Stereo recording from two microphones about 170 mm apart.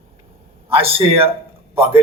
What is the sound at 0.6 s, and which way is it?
Speech, 35° right (ahead or behind).